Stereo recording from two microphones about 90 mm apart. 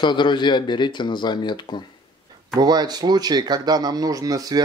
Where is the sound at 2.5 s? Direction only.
50° right (ahead or behind).